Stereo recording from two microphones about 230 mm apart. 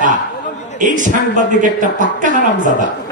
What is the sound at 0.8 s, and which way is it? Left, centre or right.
A woman's voice, right.